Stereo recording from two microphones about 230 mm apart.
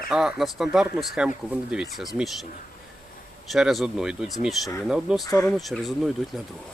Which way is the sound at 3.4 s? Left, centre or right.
Centre.